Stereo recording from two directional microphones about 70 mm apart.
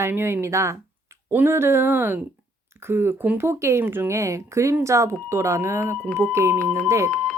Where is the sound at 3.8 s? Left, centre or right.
Right.